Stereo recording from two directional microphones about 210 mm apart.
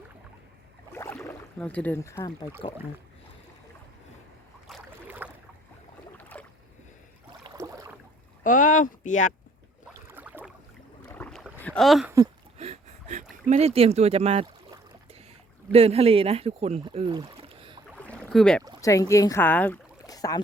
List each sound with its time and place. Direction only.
0.9 s rowboat: 10° left (ahead or behind)
4.7 s boat: 10° right (ahead or behind)
6.1 s boat: 10° left (ahead or behind)
7.4 s a sound: 15° right (ahead or behind)
8.4 s speech: 40° left (ahead or behind)
10.1 s a sound: 10° right (ahead or behind)
11.1 s boat: 5° left (ahead or behind)
11.6 s speech: 5° left (ahead or behind)
12.5 s boat: 30° right (ahead or behind)
13.5 s speech: 30° right (ahead or behind)
15.7 s speech: 30° right (ahead or behind)
17.9 s boat: 5° left (ahead or behind)
18.8 s speech: 15° left (ahead or behind)